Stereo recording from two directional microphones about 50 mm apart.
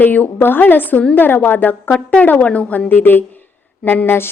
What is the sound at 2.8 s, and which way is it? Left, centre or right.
A woman's voice, left.